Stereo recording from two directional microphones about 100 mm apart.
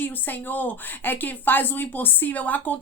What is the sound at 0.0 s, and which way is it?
A woman's voice, 20° left (ahead or behind).